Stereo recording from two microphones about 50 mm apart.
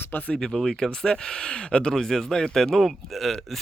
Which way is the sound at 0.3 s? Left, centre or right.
Centre.